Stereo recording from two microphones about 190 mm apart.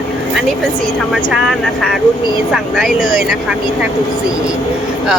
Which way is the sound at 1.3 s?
Centre (ahead or behind).